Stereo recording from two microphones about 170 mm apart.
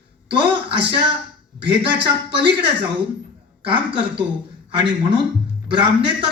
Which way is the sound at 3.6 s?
30° right (ahead or behind).